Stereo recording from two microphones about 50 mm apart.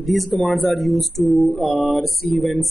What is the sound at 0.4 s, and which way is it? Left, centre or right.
Speech, centre.